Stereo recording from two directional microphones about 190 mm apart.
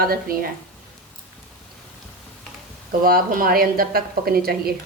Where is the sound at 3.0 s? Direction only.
50° right (ahead or behind).